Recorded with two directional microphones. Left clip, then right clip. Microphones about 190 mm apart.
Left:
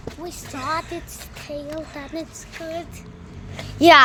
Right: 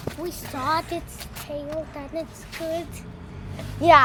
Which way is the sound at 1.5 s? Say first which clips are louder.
Even; 50° left (ahead or behind).